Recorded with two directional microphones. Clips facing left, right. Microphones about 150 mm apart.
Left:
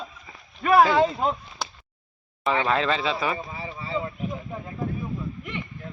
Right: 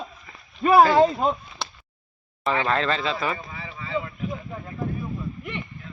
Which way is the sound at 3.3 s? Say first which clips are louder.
Left 3 dB; 30° left (ahead or behind).